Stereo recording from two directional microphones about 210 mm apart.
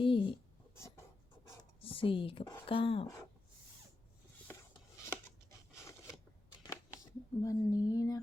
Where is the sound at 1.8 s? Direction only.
25° left (ahead or behind).